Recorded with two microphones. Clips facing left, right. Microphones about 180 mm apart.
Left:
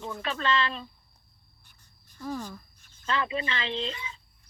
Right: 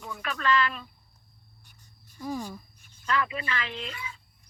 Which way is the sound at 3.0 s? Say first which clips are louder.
Even; 25° left (ahead or behind).